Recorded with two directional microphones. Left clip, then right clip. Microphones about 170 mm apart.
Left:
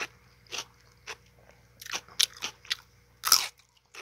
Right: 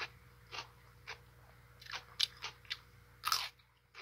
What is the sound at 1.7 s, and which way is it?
Biting, 55° left (ahead or behind).